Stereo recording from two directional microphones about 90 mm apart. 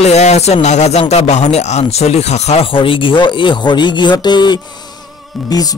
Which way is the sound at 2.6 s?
80° left.